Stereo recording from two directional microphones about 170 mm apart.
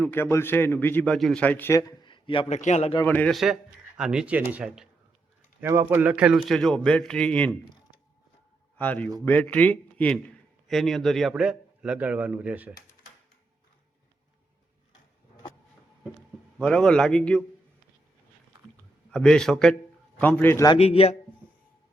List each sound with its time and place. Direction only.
0.0 s a man's voice: 10° left (ahead or behind); by 2.6 s 30° left (ahead or behind)
2.6 s a man's voice: 40° left (ahead or behind)
3.0 s a man's voice: 10° left (ahead or behind)
3.3 s a man's voice: centre (ahead or behind)
8.8 s a man's voice: 10° left (ahead or behind); by 12.7 s 10° right (ahead or behind)
16.6 s a man's voice: 5° left (ahead or behind)
19.1 s a man's voice: 5° left (ahead or behind)
20.7 s a man's voice: 35° left (ahead or behind)